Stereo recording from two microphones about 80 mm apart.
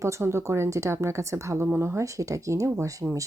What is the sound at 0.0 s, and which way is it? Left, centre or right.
Speech, right.